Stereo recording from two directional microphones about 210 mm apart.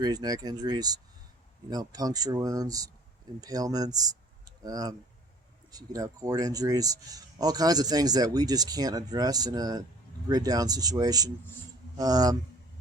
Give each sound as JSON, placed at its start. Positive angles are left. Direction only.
{"t": 0.0, "sound": "a man's voice", "side_deg": -20}